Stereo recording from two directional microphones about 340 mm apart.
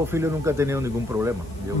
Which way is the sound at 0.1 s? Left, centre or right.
Centre.